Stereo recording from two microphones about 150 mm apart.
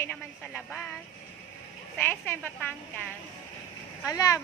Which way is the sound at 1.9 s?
15° left (ahead or behind).